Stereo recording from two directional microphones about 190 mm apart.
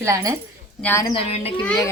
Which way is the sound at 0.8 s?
15° left (ahead or behind).